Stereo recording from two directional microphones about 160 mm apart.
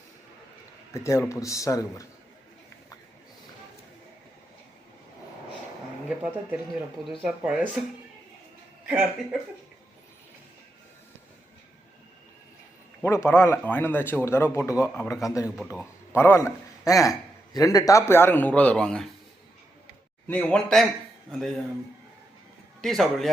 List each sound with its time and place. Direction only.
0.9 s speech: 20° left (ahead or behind)
6.1 s speech: 5° right (ahead or behind)
13.0 s a man's voice: 15° left (ahead or behind)
20.2 s a man's voice: 10° left (ahead or behind)
22.8 s speech: centre (ahead or behind)